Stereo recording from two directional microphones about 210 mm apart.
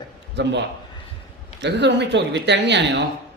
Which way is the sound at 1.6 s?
55° right (ahead or behind).